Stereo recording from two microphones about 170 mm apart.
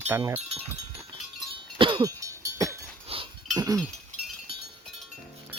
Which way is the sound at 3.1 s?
35° right (ahead or behind).